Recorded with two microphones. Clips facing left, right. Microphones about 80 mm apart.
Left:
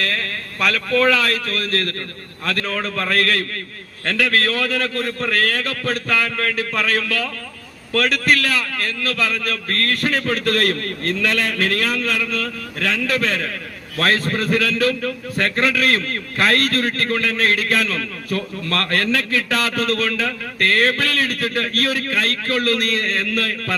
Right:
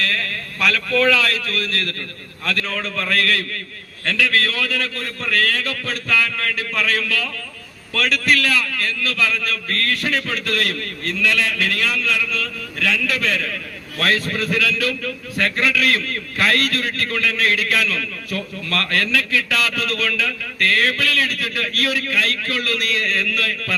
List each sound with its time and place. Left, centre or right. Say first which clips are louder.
0.0 s a man's voice: even; left